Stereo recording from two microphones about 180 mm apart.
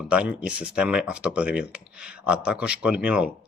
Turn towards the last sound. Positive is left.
turn(degrees=-5)  # may be behind; listen again after turning